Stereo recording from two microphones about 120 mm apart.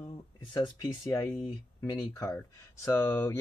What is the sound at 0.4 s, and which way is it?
Speech, 35° left (ahead or behind).